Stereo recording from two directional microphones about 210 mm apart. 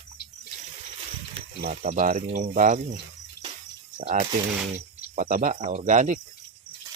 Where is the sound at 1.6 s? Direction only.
45° right (ahead or behind).